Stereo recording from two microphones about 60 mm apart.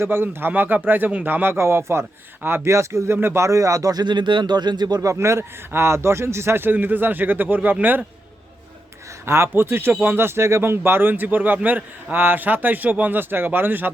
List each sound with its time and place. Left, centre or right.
0.0 s a man's voice: right
2.7 s speech: right
3.2 s a man's voice: right
3.4 s speech: right
5.1 s a man's voice: right
9.2 s a man's voice: right
10.2 s a man's voice: right